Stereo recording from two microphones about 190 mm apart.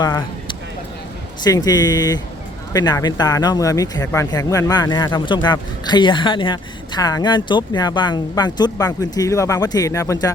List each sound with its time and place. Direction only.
0.0 s speech: 20° left (ahead or behind)